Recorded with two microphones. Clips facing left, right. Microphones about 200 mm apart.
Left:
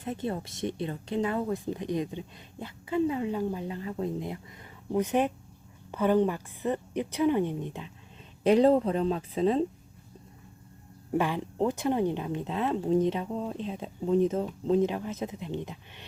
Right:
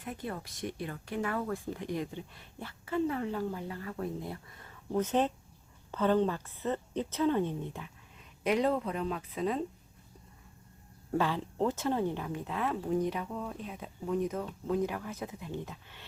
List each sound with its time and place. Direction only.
0.0 s a woman's voice: 25° left (ahead or behind)
8.4 s speech: 30° left (ahead or behind)
11.1 s speech: 15° left (ahead or behind)